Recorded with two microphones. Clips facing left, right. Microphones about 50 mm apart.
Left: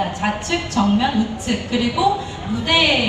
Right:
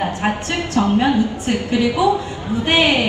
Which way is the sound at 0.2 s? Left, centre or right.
Right.